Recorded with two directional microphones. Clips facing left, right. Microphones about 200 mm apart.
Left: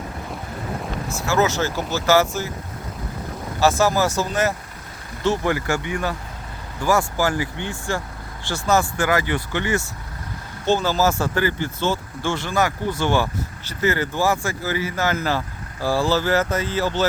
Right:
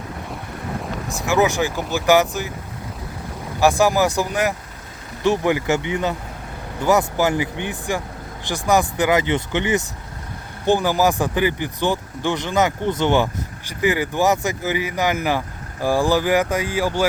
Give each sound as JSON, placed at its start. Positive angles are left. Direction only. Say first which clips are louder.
{"t": 1.0, "sound": "speech", "louder": "right 2 dB", "side_deg": -15}
{"t": 3.6, "sound": "speech", "louder": "right 2 dB", "side_deg": -15}